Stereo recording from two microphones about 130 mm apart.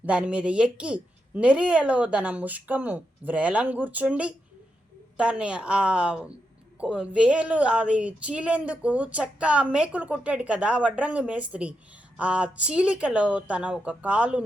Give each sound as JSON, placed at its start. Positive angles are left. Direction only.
{"t": 0.0, "sound": "speech", "side_deg": -10}